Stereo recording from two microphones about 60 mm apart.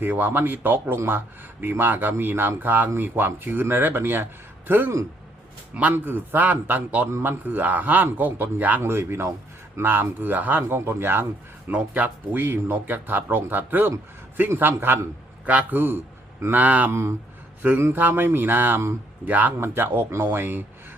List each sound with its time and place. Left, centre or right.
0.0 s speech: right
5.9 s a man's voice: right
8.8 s speech: right
10.6 s speech: right
11.7 s speech: right
15.4 s a man's voice: right
16.9 s speech: right
17.6 s a man's voice: right
19.5 s speech: right